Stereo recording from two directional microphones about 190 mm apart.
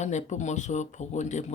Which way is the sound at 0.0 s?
35° left (ahead or behind).